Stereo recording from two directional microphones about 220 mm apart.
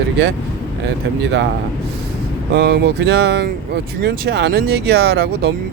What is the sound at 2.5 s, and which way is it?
Speech, 45° right (ahead or behind).